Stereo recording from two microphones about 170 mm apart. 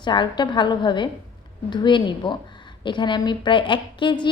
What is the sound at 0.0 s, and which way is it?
Speech, 25° left (ahead or behind).